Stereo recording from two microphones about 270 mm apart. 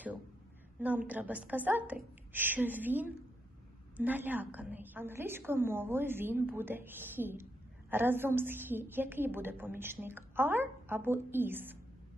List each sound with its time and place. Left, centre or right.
0.7 s a woman's voice: centre